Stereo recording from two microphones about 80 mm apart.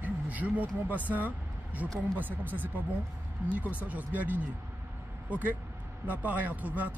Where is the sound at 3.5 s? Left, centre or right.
Centre.